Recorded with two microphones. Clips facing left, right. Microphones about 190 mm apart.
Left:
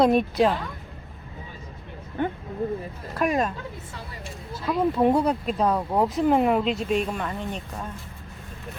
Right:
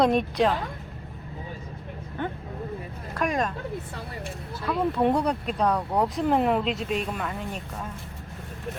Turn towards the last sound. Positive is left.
turn(degrees=-5)  # may be behind; listen again after turning